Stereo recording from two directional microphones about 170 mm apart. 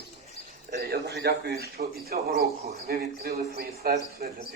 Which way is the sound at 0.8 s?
75° right (ahead or behind).